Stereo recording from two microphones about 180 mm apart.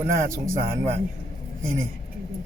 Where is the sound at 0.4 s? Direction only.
15° right (ahead or behind).